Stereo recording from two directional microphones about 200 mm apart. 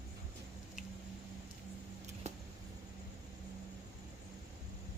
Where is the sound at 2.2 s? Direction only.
30° right (ahead or behind).